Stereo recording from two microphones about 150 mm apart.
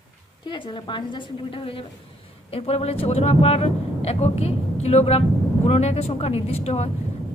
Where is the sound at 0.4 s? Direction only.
30° left (ahead or behind).